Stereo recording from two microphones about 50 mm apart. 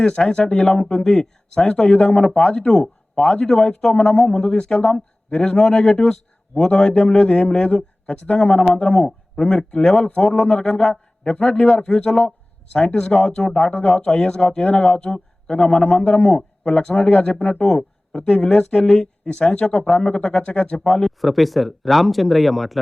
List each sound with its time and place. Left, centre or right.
0.0 s a man's voice: centre
7.8 s speech: left
8.4 s a man's voice: centre
17.6 s a man's voice: centre
20.8 s speech: centre